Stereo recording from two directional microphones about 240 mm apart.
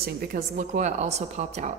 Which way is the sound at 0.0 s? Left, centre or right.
Right.